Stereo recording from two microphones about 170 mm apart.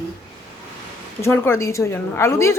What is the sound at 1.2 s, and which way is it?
A woman's voice, 15° left (ahead or behind).